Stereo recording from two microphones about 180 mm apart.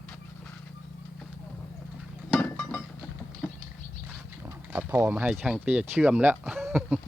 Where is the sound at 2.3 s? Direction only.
10° left (ahead or behind).